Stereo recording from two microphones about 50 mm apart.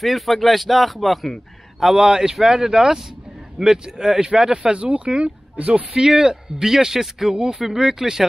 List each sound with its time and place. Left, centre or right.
0.0 s a man's voice: centre
4.6 s speech: right
5.9 s speech: centre